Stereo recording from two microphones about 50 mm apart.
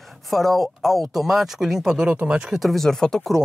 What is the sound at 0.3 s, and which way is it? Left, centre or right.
Speech, centre.